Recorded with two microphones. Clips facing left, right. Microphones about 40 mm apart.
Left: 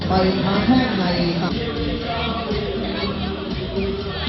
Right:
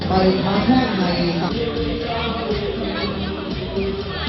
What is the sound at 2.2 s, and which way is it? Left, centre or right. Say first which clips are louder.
Music: right 1 dB; centre.